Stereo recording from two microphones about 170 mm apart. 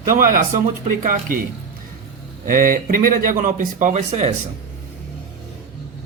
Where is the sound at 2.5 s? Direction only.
55° right (ahead or behind).